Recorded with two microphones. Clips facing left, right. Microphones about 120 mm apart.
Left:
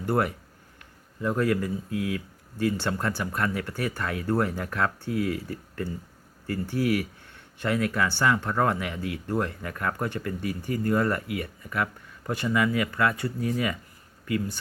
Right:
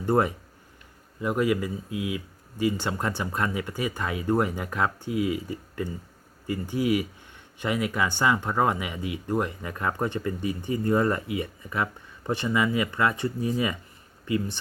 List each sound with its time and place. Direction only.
0.0 s speech: 20° right (ahead or behind)